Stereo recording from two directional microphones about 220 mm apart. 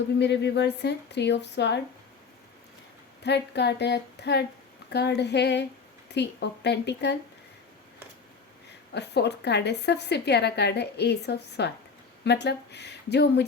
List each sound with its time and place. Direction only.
0.2 s a woman's voice: 50° left (ahead or behind)
3.2 s a woman's voice: 50° left (ahead or behind)
8.9 s a woman's voice: 50° left (ahead or behind)